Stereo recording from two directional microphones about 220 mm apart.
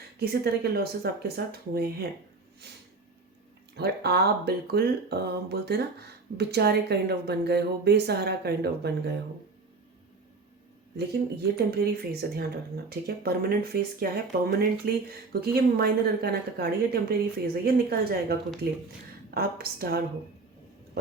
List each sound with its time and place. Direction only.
0.2 s speech: 45° right (ahead or behind)
2.6 s a sound: 50° right (ahead or behind)
3.8 s speech: 45° right (ahead or behind)
10.9 s speech: 45° right (ahead or behind)